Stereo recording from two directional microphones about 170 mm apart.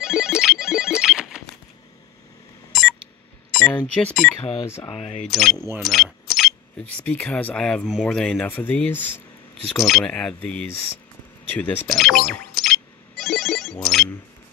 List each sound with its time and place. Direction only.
0.0 s ringtone: 5° right (ahead or behind)
2.7 s beep: centre (ahead or behind)
3.5 s speech: 5° left (ahead or behind)
4.8 s speech: 35° left (ahead or behind)
5.2 s speech: centre (ahead or behind)
5.8 s keys jangling: centre (ahead or behind)
7.0 s speech: 5° left (ahead or behind)
12.3 s a sound: centre (ahead or behind)
13.2 s ringtone: centre (ahead or behind)